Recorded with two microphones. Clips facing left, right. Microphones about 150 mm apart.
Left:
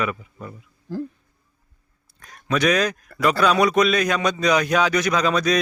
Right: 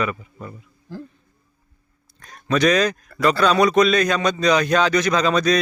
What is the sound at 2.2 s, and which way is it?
A man's voice, 5° left (ahead or behind).